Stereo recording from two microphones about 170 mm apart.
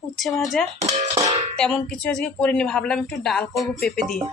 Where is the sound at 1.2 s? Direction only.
25° right (ahead or behind).